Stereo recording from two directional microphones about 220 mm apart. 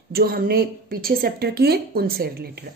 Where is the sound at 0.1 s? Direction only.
45° right (ahead or behind).